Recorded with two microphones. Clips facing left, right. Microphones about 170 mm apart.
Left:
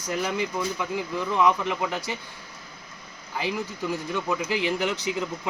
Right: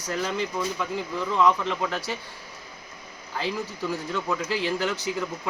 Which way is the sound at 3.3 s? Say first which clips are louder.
Even; 15° left (ahead or behind).